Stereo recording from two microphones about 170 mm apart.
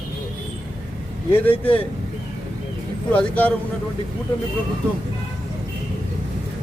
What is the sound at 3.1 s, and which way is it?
Speech, 10° left (ahead or behind).